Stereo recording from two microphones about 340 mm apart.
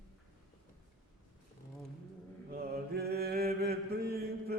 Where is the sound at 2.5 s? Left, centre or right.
Right.